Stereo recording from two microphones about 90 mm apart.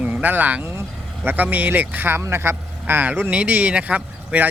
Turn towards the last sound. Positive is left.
turn(degrees=-15)  # may be behind; listen again after turning